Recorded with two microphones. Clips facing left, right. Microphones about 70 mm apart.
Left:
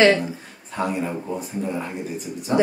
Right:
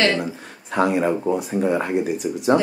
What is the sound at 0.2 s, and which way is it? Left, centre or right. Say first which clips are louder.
Speech: right 2 dB; right.